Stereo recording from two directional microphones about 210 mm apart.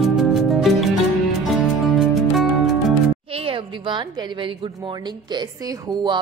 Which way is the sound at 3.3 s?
25° right (ahead or behind).